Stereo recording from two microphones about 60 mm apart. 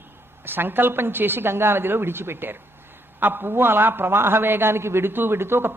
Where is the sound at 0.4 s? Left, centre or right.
Right.